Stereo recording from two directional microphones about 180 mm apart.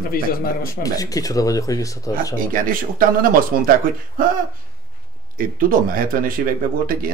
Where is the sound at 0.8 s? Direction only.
20° left (ahead or behind).